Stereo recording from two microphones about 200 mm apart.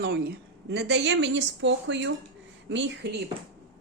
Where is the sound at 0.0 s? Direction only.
50° right (ahead or behind).